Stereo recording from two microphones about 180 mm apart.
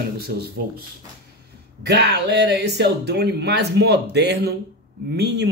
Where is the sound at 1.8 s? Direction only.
70° right (ahead or behind).